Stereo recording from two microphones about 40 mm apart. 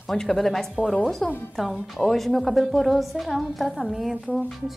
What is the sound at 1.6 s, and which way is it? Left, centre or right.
A woman's voice, centre.